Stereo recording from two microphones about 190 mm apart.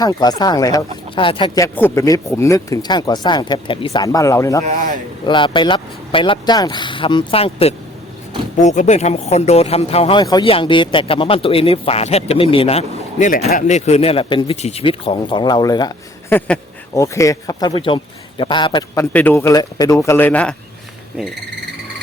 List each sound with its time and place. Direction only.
0.0 s speech: 20° left (ahead or behind)
4.6 s speech: 45° right (ahead or behind)
5.2 s speech: 25° left (ahead or behind)
19.1 s speech: 10° left (ahead or behind)